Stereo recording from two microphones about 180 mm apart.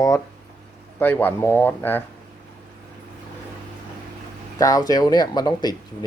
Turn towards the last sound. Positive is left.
turn(degrees=20)  # may be behind; listen again after turning